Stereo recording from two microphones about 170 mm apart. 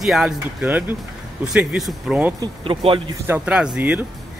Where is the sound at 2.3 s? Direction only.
25° right (ahead or behind).